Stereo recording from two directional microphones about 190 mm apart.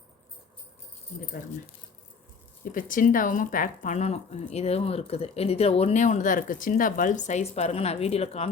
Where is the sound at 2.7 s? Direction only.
45° left (ahead or behind).